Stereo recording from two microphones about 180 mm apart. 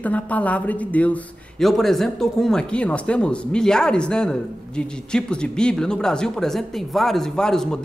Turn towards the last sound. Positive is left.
turn(degrees=5)  # may be behind; listen again after turning